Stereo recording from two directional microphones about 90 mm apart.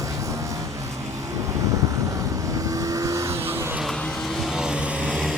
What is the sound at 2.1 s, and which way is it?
Vehicle, 40° right (ahead or behind).